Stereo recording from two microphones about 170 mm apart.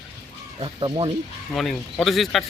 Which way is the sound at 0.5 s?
30° right (ahead or behind).